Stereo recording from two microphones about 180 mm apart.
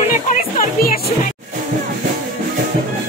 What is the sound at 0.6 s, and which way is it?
Music, 55° left (ahead or behind).